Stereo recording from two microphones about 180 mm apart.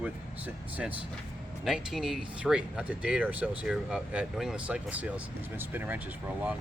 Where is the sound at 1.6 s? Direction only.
Centre (ahead or behind).